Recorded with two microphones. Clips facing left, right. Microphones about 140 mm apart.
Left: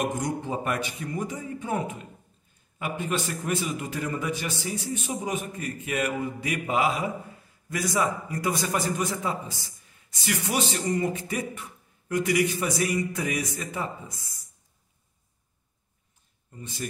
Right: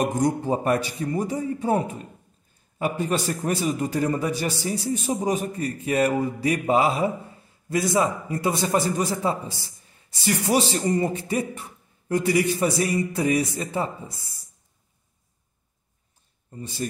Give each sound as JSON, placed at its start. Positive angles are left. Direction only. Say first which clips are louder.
{"t": 0.0, "sound": "a man's voice", "louder": "right 6 dB", "side_deg": -35}
{"t": 16.4, "sound": "speech", "louder": "right 5 dB", "side_deg": -35}